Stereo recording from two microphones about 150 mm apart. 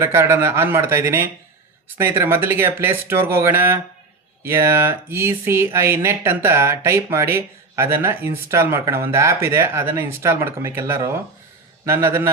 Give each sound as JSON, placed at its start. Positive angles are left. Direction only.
{"t": 0.0, "sound": "speech", "side_deg": -15}